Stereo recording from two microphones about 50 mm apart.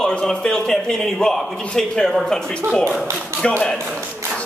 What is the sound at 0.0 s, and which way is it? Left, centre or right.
A man's voice, centre.